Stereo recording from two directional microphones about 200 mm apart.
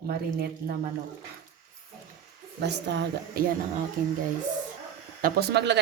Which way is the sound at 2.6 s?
60° right (ahead or behind).